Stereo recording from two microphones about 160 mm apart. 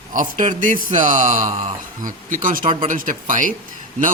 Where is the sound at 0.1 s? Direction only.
50° right (ahead or behind).